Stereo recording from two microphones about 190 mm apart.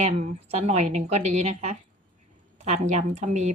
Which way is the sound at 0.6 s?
35° right (ahead or behind).